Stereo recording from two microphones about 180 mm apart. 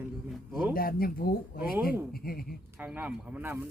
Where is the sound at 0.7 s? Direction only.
55° left (ahead or behind).